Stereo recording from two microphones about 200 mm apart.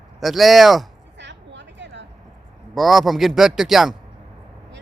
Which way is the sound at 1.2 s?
60° right (ahead or behind).